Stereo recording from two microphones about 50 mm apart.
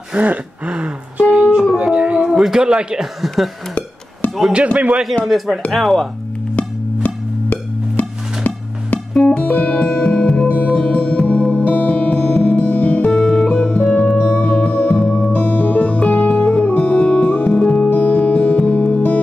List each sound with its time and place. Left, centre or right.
0.1 s speech: right
1.9 s a sound: centre
2.3 s speech: centre
2.6 s a man's voice: centre
4.7 s speech: right
5.2 s speech: centre
6.5 s music: left
9.2 s music: left
10.2 s music: centre
10.5 s music: left
13.1 s music: centre
15.4 s music: left
17.7 s music: left